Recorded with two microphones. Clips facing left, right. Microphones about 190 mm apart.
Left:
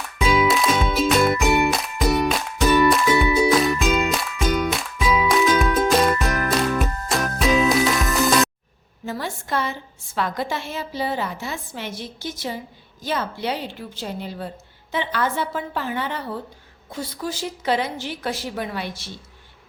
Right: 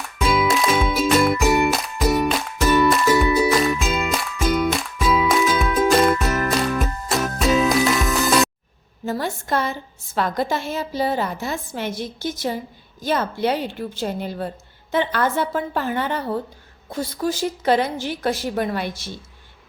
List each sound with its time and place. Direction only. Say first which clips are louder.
0.2 s music: even; centre (ahead or behind)
9.0 s a sound: right 4 dB; 40° right (ahead or behind)
10.2 s a woman's voice: right 3 dB; 40° right (ahead or behind)